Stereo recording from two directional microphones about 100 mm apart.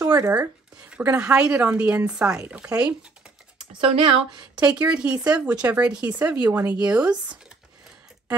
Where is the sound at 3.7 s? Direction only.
75° right (ahead or behind).